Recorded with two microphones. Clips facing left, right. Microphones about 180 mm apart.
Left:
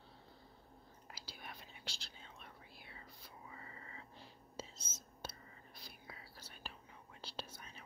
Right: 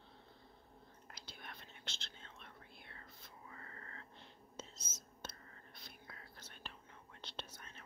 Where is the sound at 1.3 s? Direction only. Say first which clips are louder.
Left 1 dB; 5° left (ahead or behind).